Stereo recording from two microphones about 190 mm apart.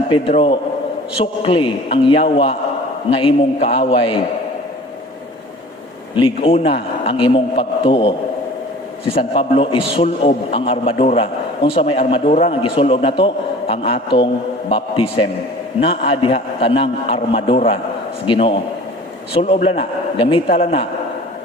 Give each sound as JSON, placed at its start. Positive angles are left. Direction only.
{"t": 0.1, "sound": "a man's voice", "side_deg": 30}
{"t": 6.1, "sound": "a man's voice", "side_deg": 30}